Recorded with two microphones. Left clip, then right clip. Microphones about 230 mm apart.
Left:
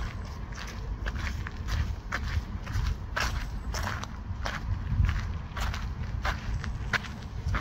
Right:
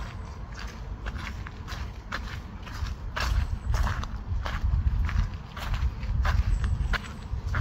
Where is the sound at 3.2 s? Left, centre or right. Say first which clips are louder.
Left 1 dB; centre.